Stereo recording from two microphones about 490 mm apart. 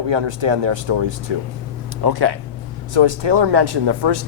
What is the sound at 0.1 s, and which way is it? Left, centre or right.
Speech, right.